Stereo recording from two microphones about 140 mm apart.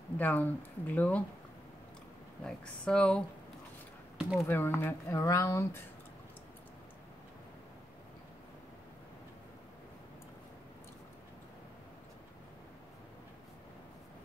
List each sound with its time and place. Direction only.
0.2 s speech: 15° left (ahead or behind)
2.4 s speech: 5° left (ahead or behind)
4.2 s speech: 5° right (ahead or behind)
4.5 s speech: 15° left (ahead or behind)